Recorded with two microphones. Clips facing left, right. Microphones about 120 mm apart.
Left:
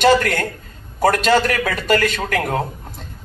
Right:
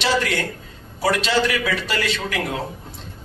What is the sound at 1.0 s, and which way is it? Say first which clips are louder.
A man's voice: left 5 dB; 50° left (ahead or behind).